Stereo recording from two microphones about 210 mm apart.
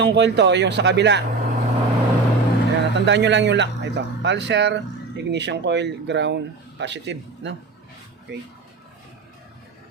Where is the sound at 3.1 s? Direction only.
55° right (ahead or behind).